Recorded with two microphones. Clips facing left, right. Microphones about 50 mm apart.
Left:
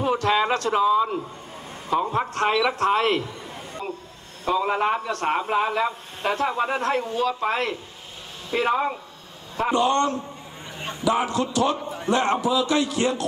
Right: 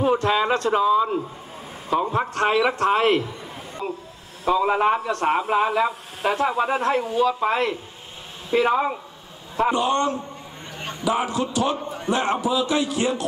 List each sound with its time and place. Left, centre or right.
0.0 s a man's voice: centre
9.8 s a man's voice: centre
12.1 s a man's voice: centre